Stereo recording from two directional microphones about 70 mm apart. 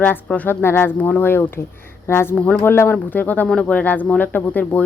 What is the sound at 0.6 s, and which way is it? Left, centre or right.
A woman's voice, left.